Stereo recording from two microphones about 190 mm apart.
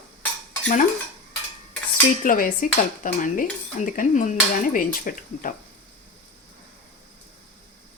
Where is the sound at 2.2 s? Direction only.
45° left (ahead or behind).